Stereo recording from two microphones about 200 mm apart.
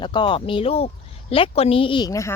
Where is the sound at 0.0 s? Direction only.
25° left (ahead or behind).